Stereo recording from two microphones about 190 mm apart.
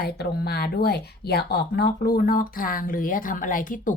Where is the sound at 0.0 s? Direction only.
55° left (ahead or behind).